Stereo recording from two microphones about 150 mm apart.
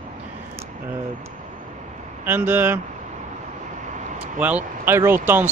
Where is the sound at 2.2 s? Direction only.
15° right (ahead or behind).